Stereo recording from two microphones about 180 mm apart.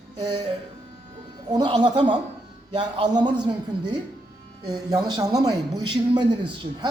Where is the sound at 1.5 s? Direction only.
25° right (ahead or behind).